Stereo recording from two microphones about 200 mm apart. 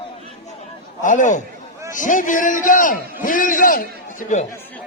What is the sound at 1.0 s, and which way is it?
A man's voice, 40° left (ahead or behind).